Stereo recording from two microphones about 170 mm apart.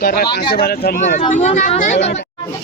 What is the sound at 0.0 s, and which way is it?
Speech, 65° left (ahead or behind).